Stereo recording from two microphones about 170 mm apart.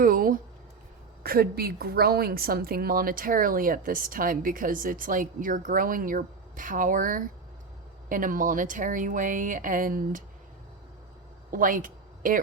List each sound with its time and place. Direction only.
0.0 s a sound: 55° right (ahead or behind)
1.2 s a woman's voice: 65° right (ahead or behind)
11.5 s speech: 55° right (ahead or behind)